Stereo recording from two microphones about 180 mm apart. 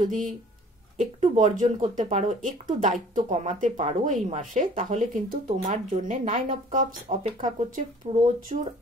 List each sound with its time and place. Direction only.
0.9 s speech: 40° right (ahead or behind)